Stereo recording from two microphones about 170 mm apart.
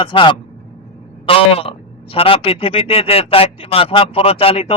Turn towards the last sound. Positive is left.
turn(degrees=35)  # may be behind; listen again after turning